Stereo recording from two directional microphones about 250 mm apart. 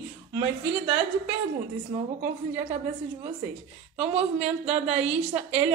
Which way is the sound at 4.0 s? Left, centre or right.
Right.